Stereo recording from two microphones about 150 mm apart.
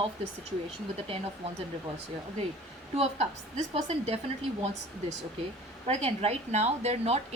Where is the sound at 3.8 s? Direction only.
50° right (ahead or behind).